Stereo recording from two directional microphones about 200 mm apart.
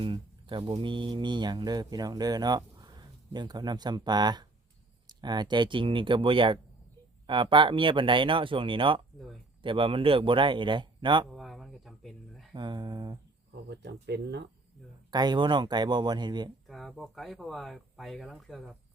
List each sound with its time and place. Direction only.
0.0 s speech: 25° right (ahead or behind)
11.3 s a sound: centre (ahead or behind)
12.5 s speech: 20° right (ahead or behind)
13.7 s speech: 55° right (ahead or behind)
15.1 s speech: 20° right (ahead or behind)
16.6 s speech: centre (ahead or behind)